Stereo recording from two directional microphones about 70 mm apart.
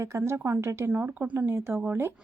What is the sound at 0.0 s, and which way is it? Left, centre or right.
A woman's voice, right.